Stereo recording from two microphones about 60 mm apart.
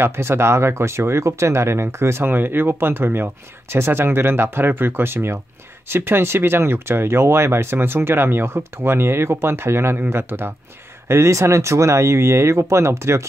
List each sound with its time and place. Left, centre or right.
0.0 s speech: right
11.1 s speech: right